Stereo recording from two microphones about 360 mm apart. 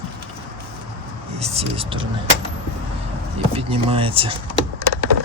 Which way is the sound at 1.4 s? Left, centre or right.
Centre.